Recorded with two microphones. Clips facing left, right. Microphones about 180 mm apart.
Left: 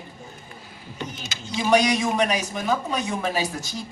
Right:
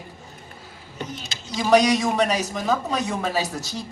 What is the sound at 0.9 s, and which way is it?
Speech, 35° right (ahead or behind).